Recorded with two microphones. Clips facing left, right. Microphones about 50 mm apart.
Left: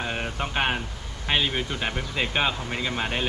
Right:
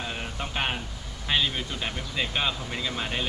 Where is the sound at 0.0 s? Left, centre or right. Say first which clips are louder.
Left 4 dB; left.